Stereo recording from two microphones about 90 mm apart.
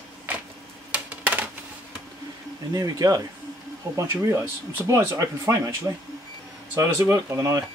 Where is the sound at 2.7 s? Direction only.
45° right (ahead or behind).